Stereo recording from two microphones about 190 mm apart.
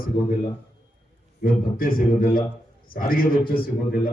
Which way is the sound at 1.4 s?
50° left (ahead or behind).